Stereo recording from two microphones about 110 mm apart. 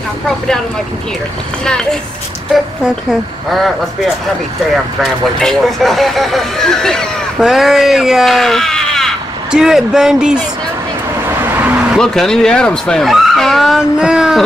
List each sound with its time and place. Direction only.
1.6 s a child's voice: 5° left (ahead or behind)
3.1 s speech: centre (ahead or behind)
5.4 s speech: 5° left (ahead or behind)
11.2 s vehicle: 20° right (ahead or behind)
12.0 s speech: 5° left (ahead or behind)